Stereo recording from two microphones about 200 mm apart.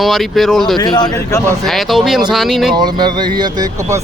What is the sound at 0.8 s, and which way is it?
Speech, 20° left (ahead or behind).